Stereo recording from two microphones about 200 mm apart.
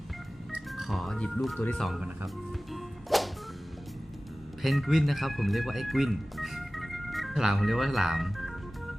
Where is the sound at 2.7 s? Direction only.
Centre (ahead or behind).